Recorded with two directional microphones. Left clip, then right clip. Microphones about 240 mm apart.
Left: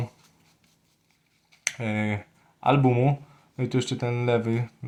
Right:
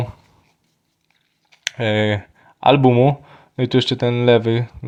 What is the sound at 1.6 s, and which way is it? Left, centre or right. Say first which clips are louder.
Speech: right 10 dB; right.